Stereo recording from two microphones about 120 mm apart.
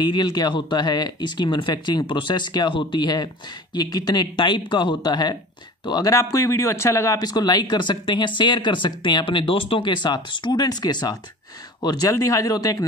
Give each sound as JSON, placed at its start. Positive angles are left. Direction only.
{"t": 0.0, "sound": "speech", "side_deg": 40}